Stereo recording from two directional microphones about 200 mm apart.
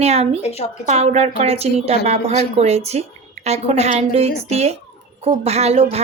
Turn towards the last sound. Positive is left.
turn(degrees=-30)  # may be behind; listen again after turning